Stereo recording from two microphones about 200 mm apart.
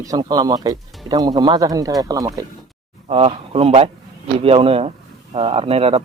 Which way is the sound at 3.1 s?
30° right (ahead or behind).